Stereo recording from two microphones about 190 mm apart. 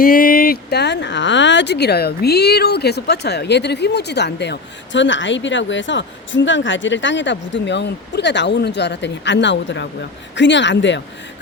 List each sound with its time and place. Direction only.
0.0 s speech: 50° left (ahead or behind); by 11.0 s 70° left (ahead or behind)